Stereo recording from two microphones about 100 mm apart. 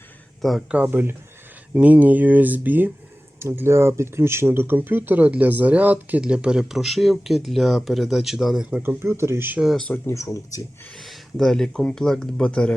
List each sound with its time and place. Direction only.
0.7 s speech: 15° right (ahead or behind)
8.8 s speech: 25° right (ahead or behind)
9.6 s speech: 5° right (ahead or behind)
10.1 s speech: 30° left (ahead or behind)
10.9 s speech: centre (ahead or behind)